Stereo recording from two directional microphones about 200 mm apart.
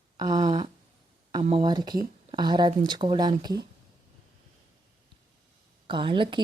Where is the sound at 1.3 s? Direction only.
25° right (ahead or behind).